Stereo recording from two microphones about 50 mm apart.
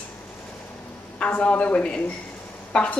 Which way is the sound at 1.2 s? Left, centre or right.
Left.